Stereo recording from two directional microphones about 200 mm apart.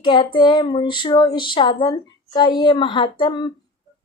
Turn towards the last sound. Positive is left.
turn(degrees=25)  # may be behind; listen again after turning